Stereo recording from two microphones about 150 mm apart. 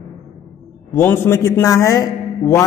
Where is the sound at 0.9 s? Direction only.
15° left (ahead or behind).